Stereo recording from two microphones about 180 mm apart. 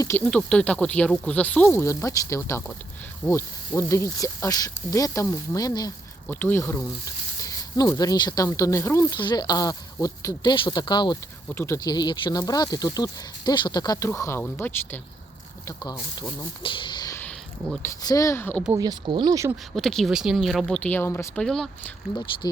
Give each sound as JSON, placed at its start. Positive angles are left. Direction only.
{"t": 0.3, "sound": "speech", "side_deg": 5}
{"t": 15.6, "sound": "speech", "side_deg": 25}
{"t": 18.8, "sound": "speech", "side_deg": -25}
{"t": 19.7, "sound": "speech", "side_deg": 0}